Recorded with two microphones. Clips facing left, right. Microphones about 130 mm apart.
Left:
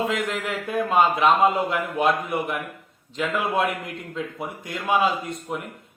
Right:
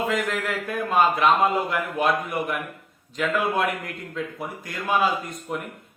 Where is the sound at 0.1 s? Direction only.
20° left (ahead or behind).